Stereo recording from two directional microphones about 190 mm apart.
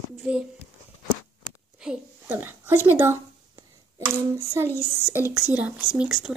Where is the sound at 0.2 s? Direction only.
5° right (ahead or behind).